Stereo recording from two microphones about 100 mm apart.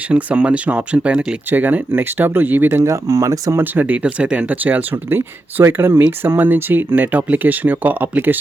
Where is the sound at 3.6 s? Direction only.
15° right (ahead or behind).